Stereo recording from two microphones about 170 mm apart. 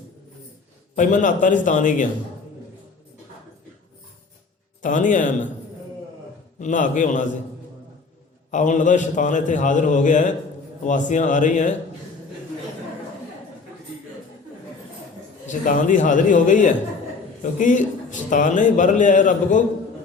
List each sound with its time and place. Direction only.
0.9 s a man's voice: 45° left (ahead or behind)
4.8 s a man's voice: 50° left (ahead or behind)
6.6 s a man's voice: 45° left (ahead or behind)
8.4 s a man's voice: 45° left (ahead or behind)
15.4 s a man's voice: 50° left (ahead or behind)